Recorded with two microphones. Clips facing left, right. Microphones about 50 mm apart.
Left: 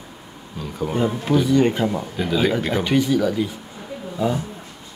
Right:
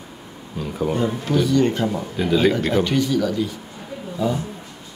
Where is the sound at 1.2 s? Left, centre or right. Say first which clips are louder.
Left 2 dB; centre.